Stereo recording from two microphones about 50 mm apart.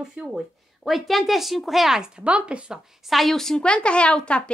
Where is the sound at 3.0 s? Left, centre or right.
Centre; by 4.5 s left.